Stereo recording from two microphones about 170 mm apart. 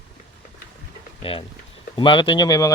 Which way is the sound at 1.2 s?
35° left (ahead or behind).